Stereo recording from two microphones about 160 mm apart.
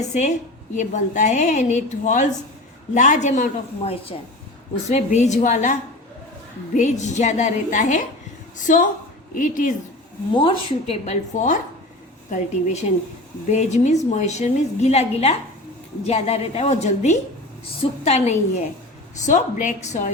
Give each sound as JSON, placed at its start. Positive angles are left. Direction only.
{"t": 0.0, "sound": "a woman's voice", "side_deg": 45}
{"t": 6.7, "sound": "a woman's voice", "side_deg": 50}
{"t": 10.3, "sound": "a woman's voice", "side_deg": 35}